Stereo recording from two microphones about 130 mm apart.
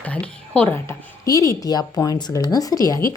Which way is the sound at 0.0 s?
10° left (ahead or behind).